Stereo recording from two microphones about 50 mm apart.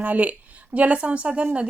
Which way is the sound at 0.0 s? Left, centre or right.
Right.